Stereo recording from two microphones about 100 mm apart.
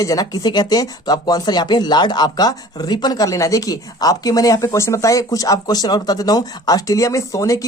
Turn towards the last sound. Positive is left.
turn(degrees=35)  # may be behind; listen again after turning